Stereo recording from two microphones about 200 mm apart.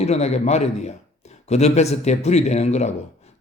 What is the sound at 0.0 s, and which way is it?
A man's voice, 35° left (ahead or behind).